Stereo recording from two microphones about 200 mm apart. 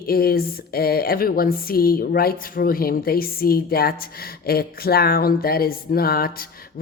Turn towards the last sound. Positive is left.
turn(degrees=50)  # may be behind; listen again after turning